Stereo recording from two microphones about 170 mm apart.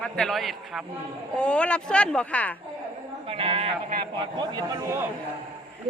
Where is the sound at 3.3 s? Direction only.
35° right (ahead or behind).